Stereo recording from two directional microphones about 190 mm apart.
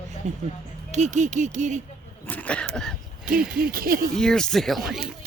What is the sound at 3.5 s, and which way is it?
Speech, 50° right (ahead or behind).